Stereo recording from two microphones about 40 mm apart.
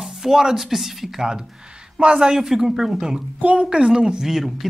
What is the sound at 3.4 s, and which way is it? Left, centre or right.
Speech, right.